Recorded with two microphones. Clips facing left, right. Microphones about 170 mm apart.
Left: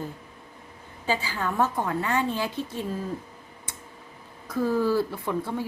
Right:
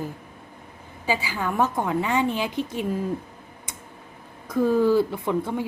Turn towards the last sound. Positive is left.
turn(degrees=-20)  # may be behind; listen again after turning